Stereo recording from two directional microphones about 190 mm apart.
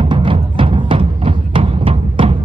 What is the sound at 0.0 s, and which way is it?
Music, 25° right (ahead or behind).